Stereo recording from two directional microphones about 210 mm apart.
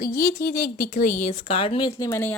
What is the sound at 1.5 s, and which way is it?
Speech, 25° left (ahead or behind).